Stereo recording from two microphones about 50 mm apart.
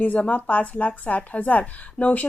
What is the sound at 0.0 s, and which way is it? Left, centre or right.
Speech, left.